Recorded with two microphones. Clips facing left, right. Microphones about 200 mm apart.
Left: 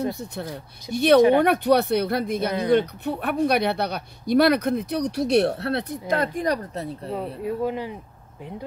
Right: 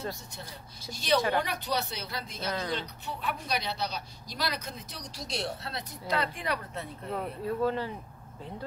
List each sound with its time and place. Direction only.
0.1 s speech: 60° left (ahead or behind); by 7.2 s 35° left (ahead or behind)
7.4 s speech: 15° left (ahead or behind)